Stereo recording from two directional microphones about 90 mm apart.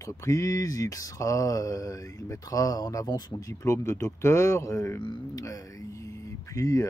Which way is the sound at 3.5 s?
35° left (ahead or behind).